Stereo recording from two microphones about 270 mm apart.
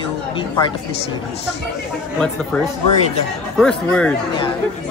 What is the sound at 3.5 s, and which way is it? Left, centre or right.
Speech, centre.